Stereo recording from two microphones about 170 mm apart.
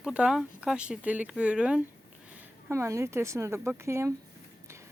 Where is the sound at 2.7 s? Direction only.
15° right (ahead or behind).